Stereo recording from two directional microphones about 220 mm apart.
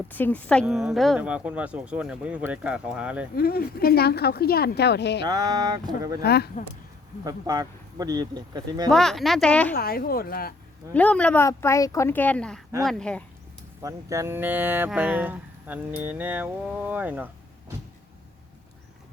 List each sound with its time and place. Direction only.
0.1 s speech: 10° left (ahead or behind)
3.3 s a woman's voice: 45° left (ahead or behind)
5.3 s speech: 15° right (ahead or behind)
6.2 s a woman's voice: 45° left (ahead or behind)
7.3 s speech: 15° right (ahead or behind)
8.9 s speech: centre (ahead or behind)
9.7 s a woman's voice: 45° left (ahead or behind)
10.9 s speech: 5° left (ahead or behind)
13.8 s speech: 15° right (ahead or behind)